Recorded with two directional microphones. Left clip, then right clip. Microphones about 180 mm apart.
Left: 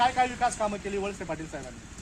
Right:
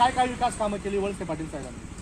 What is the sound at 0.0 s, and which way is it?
Speech, 5° right (ahead or behind).